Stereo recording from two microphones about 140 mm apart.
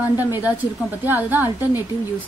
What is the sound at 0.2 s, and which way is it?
A woman's voice, 10° right (ahead or behind).